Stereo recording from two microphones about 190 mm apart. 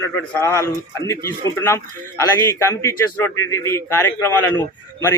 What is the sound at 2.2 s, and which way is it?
A man's voice, 15° left (ahead or behind).